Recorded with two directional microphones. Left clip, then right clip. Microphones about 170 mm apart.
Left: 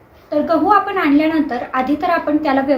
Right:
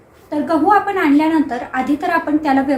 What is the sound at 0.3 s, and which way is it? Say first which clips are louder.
A woman's voice: left 1 dB; 5° left (ahead or behind).